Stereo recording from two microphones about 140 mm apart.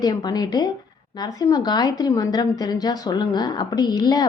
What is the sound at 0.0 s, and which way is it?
A woman's voice, 30° left (ahead or behind).